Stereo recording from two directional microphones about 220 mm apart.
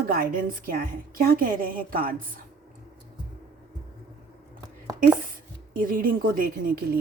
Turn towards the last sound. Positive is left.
turn(degrees=-40)  # may be behind; listen again after turning